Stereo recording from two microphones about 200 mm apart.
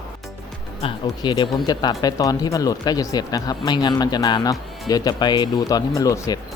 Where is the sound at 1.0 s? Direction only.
20° left (ahead or behind).